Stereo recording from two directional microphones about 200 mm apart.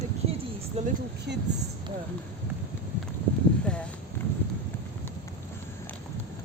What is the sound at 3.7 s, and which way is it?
Speech, 5° left (ahead or behind).